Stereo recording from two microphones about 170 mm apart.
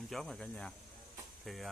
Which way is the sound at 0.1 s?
Centre (ahead or behind).